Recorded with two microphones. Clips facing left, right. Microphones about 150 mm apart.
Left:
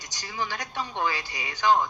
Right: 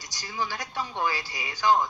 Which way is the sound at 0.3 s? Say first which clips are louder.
Even; 20° left (ahead or behind).